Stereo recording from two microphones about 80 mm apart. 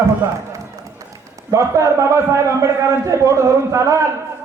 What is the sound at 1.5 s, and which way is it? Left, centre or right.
A man's voice, right.